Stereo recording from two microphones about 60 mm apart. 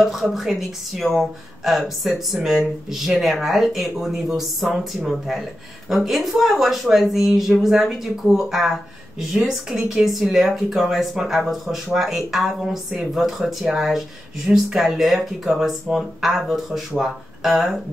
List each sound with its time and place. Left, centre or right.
0.0 s a woman's voice: centre